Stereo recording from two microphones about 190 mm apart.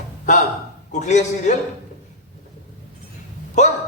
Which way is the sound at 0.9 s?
40° left (ahead or behind).